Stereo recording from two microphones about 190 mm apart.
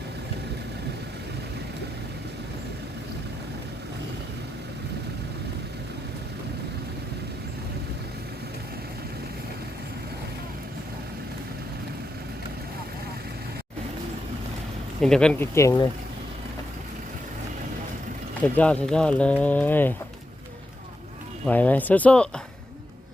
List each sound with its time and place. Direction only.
15.0 s speech: 5° left (ahead or behind)
15.5 s speech: 15° left (ahead or behind)
18.4 s speech: 5° left (ahead or behind)
21.4 s speech: 10° left (ahead or behind)